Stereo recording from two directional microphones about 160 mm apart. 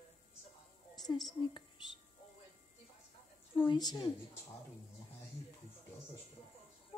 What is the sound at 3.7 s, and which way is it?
Speech, 25° left (ahead or behind).